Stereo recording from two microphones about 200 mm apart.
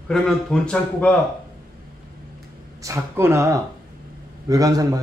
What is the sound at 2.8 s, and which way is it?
Speech, 15° right (ahead or behind).